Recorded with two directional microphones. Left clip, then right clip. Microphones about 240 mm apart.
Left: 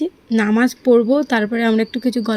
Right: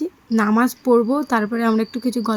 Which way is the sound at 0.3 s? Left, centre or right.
Centre.